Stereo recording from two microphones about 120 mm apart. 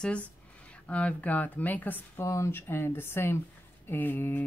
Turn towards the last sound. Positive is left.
turn(degrees=15)  # may be behind; listen again after turning